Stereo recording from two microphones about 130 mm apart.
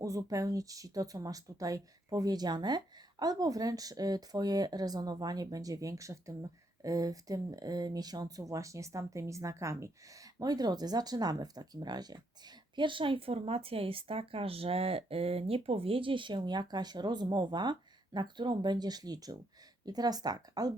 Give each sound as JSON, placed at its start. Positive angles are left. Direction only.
{"t": 0.0, "sound": "speech", "side_deg": -25}